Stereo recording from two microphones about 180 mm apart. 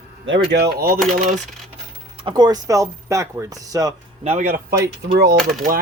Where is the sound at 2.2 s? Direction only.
25° right (ahead or behind).